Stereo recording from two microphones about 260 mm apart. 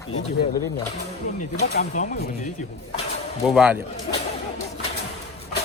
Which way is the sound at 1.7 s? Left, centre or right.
Left.